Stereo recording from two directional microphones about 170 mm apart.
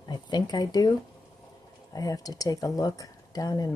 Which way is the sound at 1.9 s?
20° left (ahead or behind).